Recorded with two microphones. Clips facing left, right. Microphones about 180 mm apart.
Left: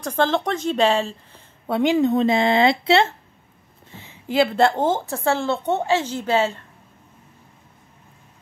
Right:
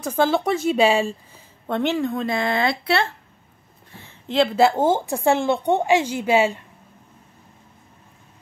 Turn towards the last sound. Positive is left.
turn(degrees=-10)  # may be behind; listen again after turning